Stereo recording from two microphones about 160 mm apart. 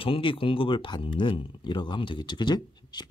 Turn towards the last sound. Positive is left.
turn(degrees=25)  # may be behind; listen again after turning